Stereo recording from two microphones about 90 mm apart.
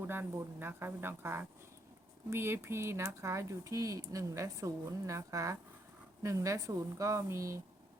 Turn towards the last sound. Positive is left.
turn(degrees=-35)  # may be behind; listen again after turning